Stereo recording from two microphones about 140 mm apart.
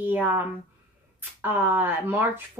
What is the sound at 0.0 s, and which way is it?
A woman's voice, 15° right (ahead or behind).